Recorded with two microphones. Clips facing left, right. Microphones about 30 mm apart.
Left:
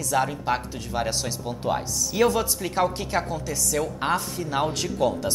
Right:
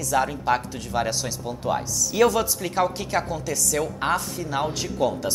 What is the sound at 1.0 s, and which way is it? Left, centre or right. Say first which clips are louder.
A woman's voice: right 1 dB; centre.